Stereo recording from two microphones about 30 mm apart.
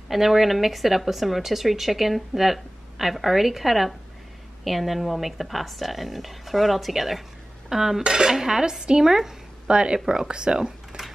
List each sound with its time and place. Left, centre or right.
0.1 s a woman's voice: centre
7.7 s dishes: centre
8.0 s speech: right
8.3 s dishes: centre
9.7 s speech: right